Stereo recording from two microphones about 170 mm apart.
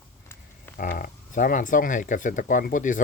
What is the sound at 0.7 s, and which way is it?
Speech, 50° left (ahead or behind).